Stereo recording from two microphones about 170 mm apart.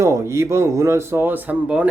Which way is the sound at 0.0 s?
15° right (ahead or behind).